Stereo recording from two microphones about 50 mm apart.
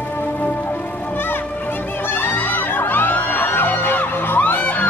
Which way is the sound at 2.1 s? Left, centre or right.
Left.